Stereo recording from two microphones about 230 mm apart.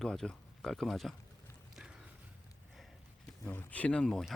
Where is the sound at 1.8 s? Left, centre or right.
Centre.